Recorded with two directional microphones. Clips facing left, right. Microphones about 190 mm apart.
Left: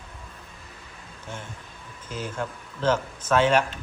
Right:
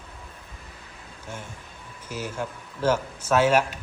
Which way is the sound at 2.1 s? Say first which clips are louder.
Even; 10° right (ahead or behind).